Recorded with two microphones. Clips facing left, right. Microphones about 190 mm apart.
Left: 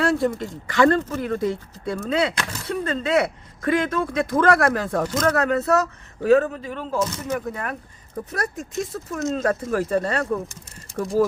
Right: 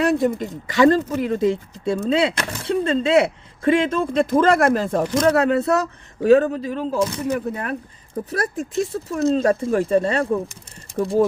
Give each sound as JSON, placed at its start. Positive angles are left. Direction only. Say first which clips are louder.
{"t": 0.0, "sound": "speech", "louder": "right 2 dB", "side_deg": -20}
{"t": 8.3, "sound": "speech", "louder": "right 4 dB", "side_deg": -30}